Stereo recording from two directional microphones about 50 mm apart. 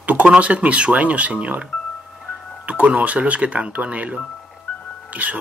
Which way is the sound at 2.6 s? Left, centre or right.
Right.